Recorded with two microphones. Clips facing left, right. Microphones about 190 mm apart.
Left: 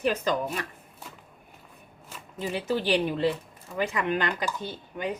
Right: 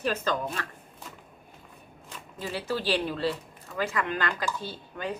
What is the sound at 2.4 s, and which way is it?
A woman's voice, 20° left (ahead or behind).